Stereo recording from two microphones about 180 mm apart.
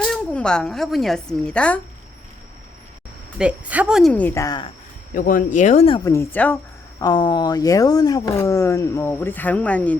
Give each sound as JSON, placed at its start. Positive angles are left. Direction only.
{"t": 0.0, "sound": "a woman's voice", "side_deg": 5}
{"t": 3.3, "sound": "speech", "side_deg": -5}
{"t": 4.1, "sound": "speech", "side_deg": 10}
{"t": 5.1, "sound": "speech", "side_deg": 50}
{"t": 6.1, "sound": "speech", "side_deg": 10}
{"t": 7.0, "sound": "speech", "side_deg": 25}